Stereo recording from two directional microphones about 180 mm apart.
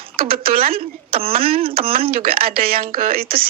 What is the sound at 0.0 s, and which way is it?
Speech, 55° right (ahead or behind).